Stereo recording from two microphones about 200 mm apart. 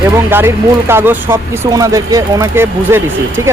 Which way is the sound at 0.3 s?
10° right (ahead or behind).